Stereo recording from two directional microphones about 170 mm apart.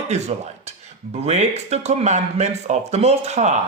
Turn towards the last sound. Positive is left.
turn(degrees=-45)  # may be behind; listen again after turning